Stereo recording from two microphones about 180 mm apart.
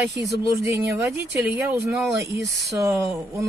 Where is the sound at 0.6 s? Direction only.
15° right (ahead or behind).